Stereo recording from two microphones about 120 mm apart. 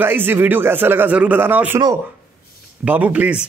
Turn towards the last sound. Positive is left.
turn(degrees=-10)  # may be behind; listen again after turning